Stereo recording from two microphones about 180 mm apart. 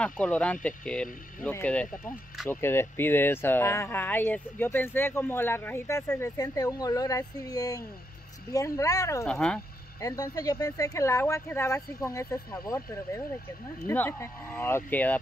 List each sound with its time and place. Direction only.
0.0 s speech: 5° left (ahead or behind)
2.5 s speech: 15° left (ahead or behind)
9.2 s speech: 5° left (ahead or behind)
9.9 s speech: 20° left (ahead or behind)